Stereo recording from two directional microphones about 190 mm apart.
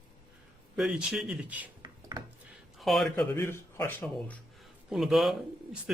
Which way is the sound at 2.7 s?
Centre (ahead or behind).